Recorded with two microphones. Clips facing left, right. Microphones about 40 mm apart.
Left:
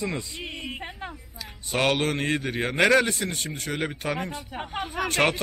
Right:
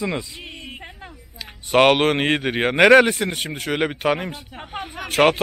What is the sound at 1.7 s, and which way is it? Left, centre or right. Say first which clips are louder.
Speech: right 9 dB; right.